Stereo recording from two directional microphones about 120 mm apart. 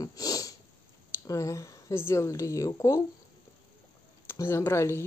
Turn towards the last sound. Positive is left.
turn(degrees=20)  # may be behind; listen again after turning